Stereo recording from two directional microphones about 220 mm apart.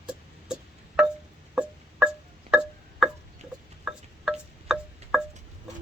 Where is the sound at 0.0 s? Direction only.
5° right (ahead or behind).